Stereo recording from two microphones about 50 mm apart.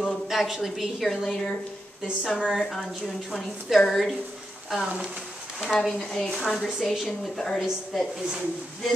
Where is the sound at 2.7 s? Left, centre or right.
Centre.